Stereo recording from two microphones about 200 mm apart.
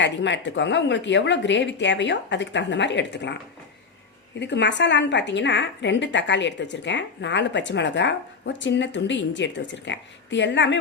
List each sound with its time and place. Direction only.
0.0 s a woman's voice: 65° left (ahead or behind)
4.4 s a woman's voice: 60° left (ahead or behind)